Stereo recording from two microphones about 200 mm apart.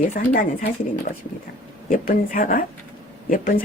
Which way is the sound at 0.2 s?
40° left (ahead or behind).